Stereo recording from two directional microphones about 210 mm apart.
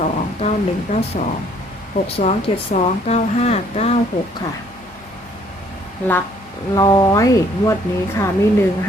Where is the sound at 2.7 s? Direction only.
30° left (ahead or behind).